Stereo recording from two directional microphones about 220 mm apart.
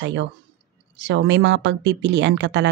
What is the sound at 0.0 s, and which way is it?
A woman's voice, 55° right (ahead or behind).